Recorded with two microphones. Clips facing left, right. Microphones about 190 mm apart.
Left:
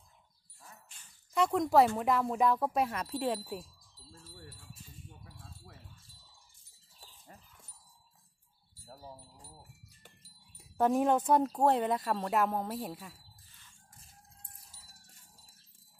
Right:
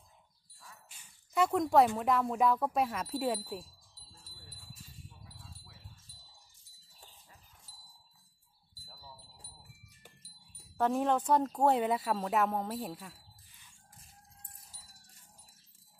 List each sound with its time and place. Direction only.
0.8 s a sound: 10° right (ahead or behind)
2.0 s speech: centre (ahead or behind)
5.2 s wind chime: 50° left (ahead or behind)
8.8 s wind chime: 50° left (ahead or behind)
10.8 s speech: 15° left (ahead or behind)